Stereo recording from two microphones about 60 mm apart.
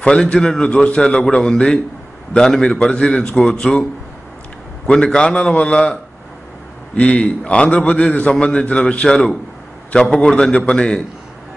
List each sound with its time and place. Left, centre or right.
0.0 s a man's voice: centre
4.8 s a man's voice: centre
7.0 s a man's voice: left
10.1 s a man's voice: left